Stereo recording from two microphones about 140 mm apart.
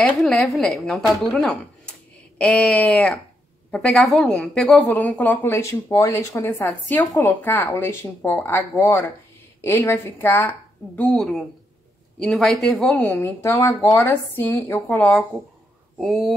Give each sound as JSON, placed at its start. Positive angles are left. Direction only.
{"t": 0.2, "sound": "a woman's voice", "side_deg": 0}
{"t": 11.0, "sound": "a woman's voice", "side_deg": 5}
{"t": 13.2, "sound": "a woman's voice", "side_deg": 20}
{"t": 16.0, "sound": "a woman's voice", "side_deg": 0}